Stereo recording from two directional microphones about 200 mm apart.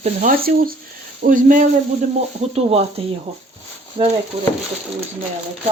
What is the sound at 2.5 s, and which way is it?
Speech, 30° right (ahead or behind).